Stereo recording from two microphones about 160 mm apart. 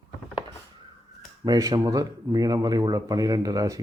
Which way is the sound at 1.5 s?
20° right (ahead or behind).